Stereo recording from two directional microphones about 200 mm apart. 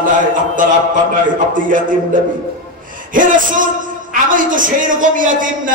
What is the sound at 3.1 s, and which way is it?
Mantra, 40° right (ahead or behind).